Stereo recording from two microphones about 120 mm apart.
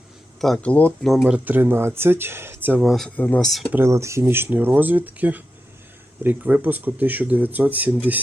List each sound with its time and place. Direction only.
0.4 s speech: 5° left (ahead or behind)
1.0 s speech: 5° right (ahead or behind)
2.8 s speech: centre (ahead or behind)
3.7 s speech: 20° right (ahead or behind)